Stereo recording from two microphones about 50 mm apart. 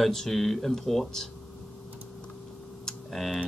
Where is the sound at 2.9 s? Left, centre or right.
Centre.